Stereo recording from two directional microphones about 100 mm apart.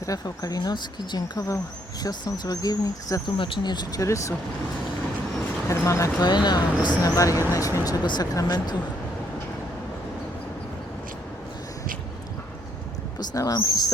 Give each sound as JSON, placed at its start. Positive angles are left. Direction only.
{"t": 0.0, "sound": "speech", "side_deg": 35}
{"t": 3.3, "sound": "speech", "side_deg": 55}
{"t": 4.0, "sound": "speech", "side_deg": 30}
{"t": 5.6, "sound": "speech", "side_deg": 30}
{"t": 6.2, "sound": "speech", "side_deg": 45}
{"t": 7.0, "sound": "speech", "side_deg": 35}
{"t": 7.9, "sound": "speech", "side_deg": 45}
{"t": 13.1, "sound": "speech", "side_deg": 40}